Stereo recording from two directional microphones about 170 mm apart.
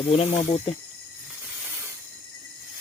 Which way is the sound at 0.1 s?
35° left (ahead or behind).